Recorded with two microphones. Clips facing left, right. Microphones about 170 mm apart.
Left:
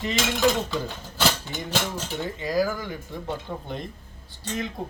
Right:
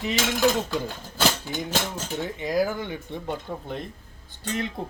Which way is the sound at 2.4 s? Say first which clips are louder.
Even; 20° right (ahead or behind).